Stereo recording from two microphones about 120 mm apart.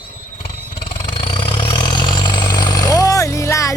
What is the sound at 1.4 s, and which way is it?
Vehicle, 40° left (ahead or behind).